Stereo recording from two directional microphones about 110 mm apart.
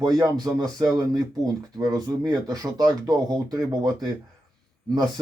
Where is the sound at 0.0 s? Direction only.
35° right (ahead or behind).